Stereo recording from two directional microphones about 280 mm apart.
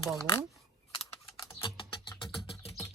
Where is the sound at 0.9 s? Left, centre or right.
Centre.